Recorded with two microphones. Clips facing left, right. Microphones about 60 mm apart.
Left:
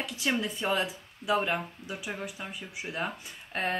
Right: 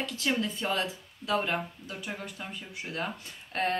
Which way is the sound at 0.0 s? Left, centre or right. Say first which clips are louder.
Even; centre.